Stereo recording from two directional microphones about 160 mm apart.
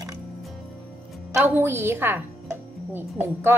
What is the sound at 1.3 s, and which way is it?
A woman's voice, 15° right (ahead or behind).